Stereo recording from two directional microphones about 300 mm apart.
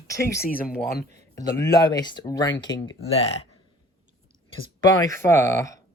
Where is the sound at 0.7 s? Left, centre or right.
Left.